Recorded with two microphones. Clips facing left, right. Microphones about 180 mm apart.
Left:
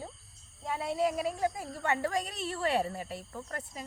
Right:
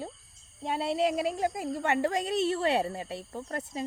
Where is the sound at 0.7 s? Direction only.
75° right (ahead or behind).